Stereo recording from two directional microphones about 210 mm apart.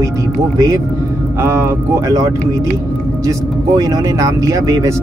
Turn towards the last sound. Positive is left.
turn(degrees=-15)  # may be behind; listen again after turning